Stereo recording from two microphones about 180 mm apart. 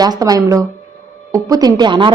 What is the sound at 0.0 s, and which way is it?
Speech, 20° right (ahead or behind).